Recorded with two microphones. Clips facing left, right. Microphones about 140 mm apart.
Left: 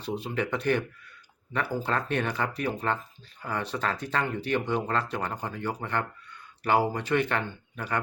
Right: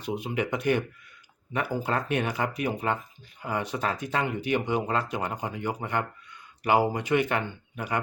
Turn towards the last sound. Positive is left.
turn(degrees=-10)  # may be behind; listen again after turning